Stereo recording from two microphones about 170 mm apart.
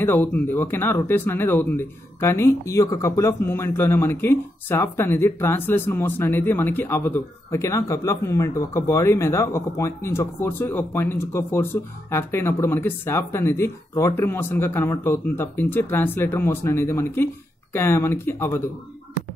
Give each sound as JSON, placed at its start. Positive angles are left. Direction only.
{"t": 0.0, "sound": "speech", "side_deg": 10}